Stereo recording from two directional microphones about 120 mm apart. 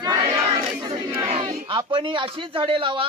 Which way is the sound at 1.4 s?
45° right (ahead or behind).